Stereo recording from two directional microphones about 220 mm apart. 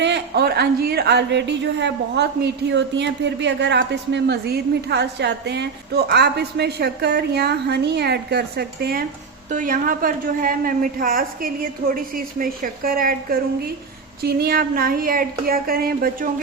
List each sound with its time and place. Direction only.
0.0 s a woman's voice: 50° right (ahead or behind)